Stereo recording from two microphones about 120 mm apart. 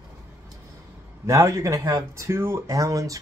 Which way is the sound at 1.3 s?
25° right (ahead or behind).